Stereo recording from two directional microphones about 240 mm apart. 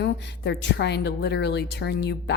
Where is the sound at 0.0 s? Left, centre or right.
Left.